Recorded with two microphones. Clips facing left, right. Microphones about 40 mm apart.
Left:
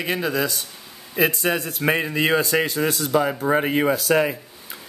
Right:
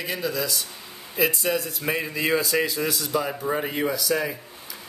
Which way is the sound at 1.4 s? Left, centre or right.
Left.